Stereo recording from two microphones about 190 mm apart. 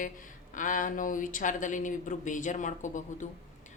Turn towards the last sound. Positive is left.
turn(degrees=40)  # may be behind; listen again after turning